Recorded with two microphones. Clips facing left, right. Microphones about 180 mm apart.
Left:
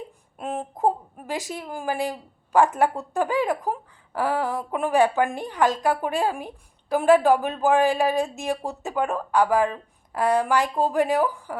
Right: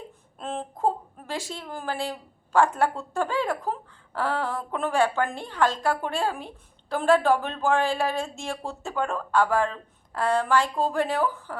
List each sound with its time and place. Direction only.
0.3 s speech: 15° left (ahead or behind)